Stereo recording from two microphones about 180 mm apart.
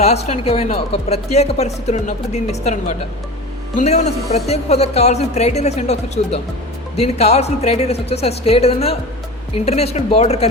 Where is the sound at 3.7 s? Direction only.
40° left (ahead or behind).